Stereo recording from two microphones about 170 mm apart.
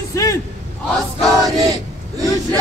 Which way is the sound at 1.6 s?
20° right (ahead or behind).